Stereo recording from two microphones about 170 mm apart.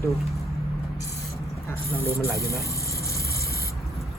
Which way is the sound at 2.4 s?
15° left (ahead or behind).